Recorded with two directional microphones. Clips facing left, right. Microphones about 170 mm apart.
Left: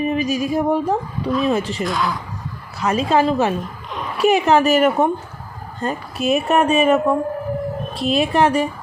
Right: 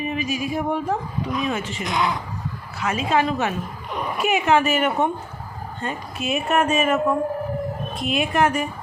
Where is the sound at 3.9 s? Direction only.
10° right (ahead or behind).